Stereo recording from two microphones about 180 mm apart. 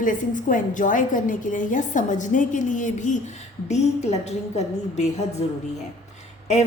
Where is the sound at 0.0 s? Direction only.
45° left (ahead or behind).